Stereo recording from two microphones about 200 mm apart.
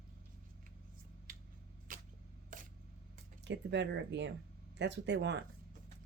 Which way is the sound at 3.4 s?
60° right (ahead or behind).